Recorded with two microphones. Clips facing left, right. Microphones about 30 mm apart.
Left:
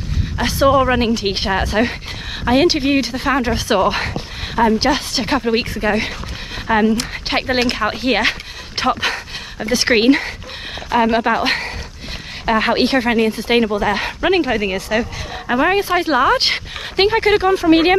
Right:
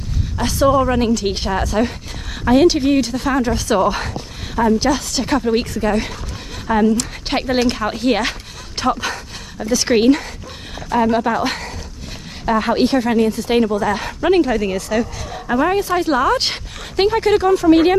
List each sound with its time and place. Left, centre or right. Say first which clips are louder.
0.4 s speech: left 1 dB; left